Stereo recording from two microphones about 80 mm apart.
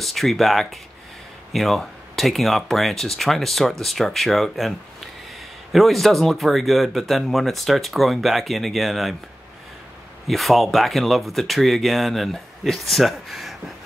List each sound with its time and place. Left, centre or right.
0.0 s speech: centre
10.2 s speech: centre